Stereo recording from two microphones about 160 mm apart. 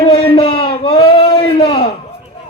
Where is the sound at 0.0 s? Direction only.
35° left (ahead or behind).